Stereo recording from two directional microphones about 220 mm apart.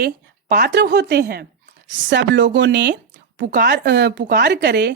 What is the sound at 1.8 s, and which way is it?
Speech, 55° right (ahead or behind).